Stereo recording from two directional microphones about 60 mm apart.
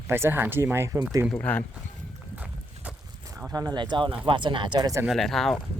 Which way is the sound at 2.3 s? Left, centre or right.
Centre.